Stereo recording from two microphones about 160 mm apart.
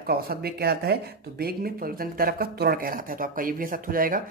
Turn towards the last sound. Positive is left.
turn(degrees=-60)  # may be behind; listen again after turning